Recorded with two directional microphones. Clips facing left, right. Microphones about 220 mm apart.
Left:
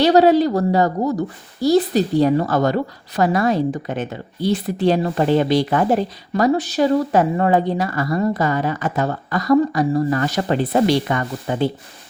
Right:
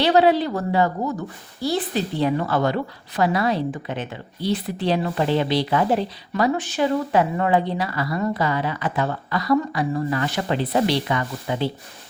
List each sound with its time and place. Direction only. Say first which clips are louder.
0.0 s a woman's voice: left 4 dB; 40° left (ahead or behind)